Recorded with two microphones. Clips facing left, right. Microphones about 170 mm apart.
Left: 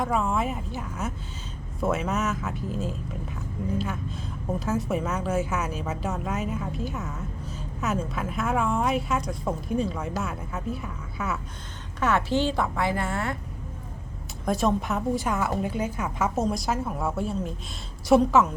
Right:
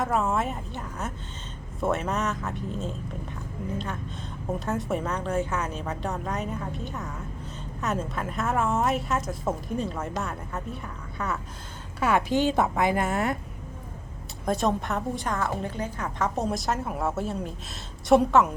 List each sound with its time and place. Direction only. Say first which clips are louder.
0.0 s a woman's voice: even; centre (ahead or behind)
4.4 s a woman's voice: left 1 dB; centre (ahead or behind)
11.9 s a woman's voice: right 1 dB; 10° right (ahead or behind)
14.4 s a woman's voice: left 1 dB; centre (ahead or behind)